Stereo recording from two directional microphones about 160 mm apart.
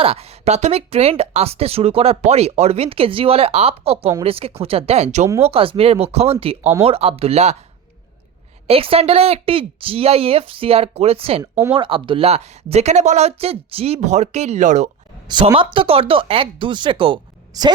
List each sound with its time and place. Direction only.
0.0 s speech: 40° right (ahead or behind)
8.6 s speech: 35° right (ahead or behind)
15.5 s speech: 35° right (ahead or behind)